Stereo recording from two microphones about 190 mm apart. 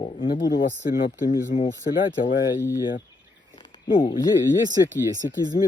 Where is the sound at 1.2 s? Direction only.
35° left (ahead or behind).